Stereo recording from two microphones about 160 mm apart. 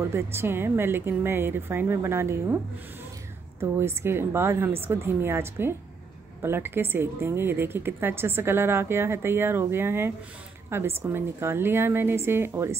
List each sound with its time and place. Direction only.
0.0 s a woman's voice: 15° right (ahead or behind)
3.5 s a woman's voice: 15° right (ahead or behind)